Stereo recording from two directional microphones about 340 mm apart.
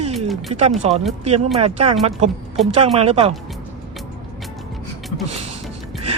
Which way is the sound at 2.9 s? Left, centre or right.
Centre.